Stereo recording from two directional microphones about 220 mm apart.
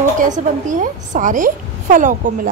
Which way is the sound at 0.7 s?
35° right (ahead or behind).